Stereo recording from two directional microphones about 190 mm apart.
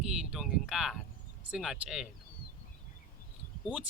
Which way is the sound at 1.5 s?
Centre (ahead or behind).